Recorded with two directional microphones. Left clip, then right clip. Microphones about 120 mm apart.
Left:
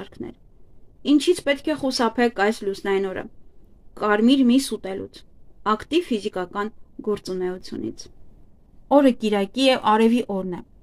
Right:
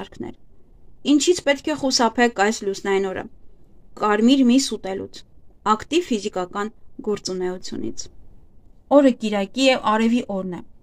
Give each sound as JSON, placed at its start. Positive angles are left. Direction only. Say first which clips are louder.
{"t": 0.0, "sound": "speech", "louder": "right 2 dB", "side_deg": -35}
{"t": 8.8, "sound": "speech", "louder": "right 1 dB", "side_deg": 0}